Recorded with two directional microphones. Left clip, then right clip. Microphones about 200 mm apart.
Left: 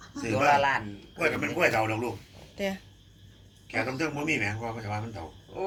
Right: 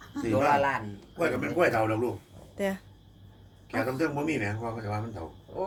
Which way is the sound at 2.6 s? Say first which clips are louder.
Right 1 dB; 15° right (ahead or behind).